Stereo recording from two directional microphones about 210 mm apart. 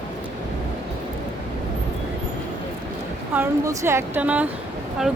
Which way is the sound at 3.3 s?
10° right (ahead or behind).